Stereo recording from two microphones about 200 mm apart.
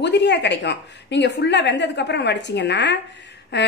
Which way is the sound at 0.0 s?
60° left (ahead or behind).